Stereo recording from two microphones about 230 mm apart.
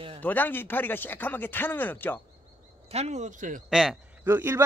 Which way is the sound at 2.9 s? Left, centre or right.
Right.